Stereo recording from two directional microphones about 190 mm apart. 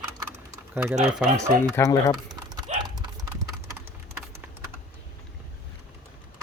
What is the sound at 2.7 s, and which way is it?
Clip-clop, 35° right (ahead or behind).